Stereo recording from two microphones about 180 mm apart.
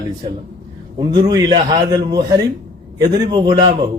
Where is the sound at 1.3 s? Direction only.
25° right (ahead or behind).